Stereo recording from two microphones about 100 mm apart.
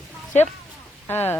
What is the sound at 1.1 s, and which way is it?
Speech, 20° left (ahead or behind).